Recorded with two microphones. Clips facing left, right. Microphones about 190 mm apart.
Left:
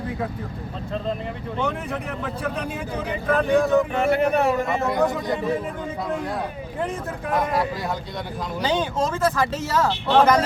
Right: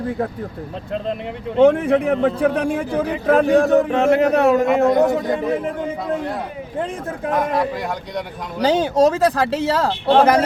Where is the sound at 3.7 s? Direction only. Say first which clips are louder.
Right 5 dB; 80° right.